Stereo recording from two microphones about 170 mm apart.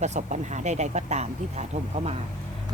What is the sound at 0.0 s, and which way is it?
Speech, 45° right (ahead or behind).